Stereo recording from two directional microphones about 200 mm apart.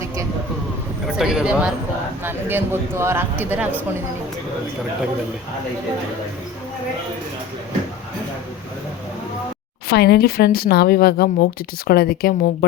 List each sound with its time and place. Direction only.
1.0 s speech: 5° right (ahead or behind)
9.9 s a woman's voice: 55° left (ahead or behind)